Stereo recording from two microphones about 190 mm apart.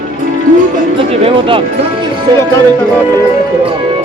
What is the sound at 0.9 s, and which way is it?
Speech, 30° right (ahead or behind).